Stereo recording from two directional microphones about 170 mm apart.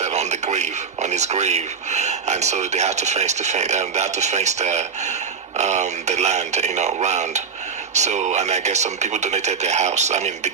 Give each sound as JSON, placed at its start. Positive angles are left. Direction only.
{"t": 0.0, "sound": "a man's voice", "side_deg": -40}